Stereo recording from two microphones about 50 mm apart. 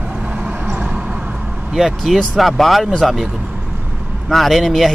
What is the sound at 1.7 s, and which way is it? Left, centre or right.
Speech, centre.